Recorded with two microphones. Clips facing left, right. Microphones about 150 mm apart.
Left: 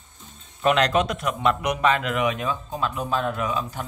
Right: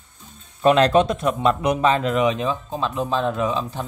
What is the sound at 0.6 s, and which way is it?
Speech, 30° right (ahead or behind).